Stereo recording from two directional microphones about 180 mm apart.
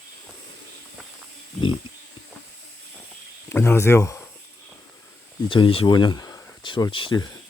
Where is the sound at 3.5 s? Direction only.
15° left (ahead or behind).